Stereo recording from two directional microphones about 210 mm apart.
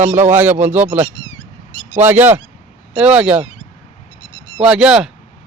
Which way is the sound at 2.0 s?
10° right (ahead or behind).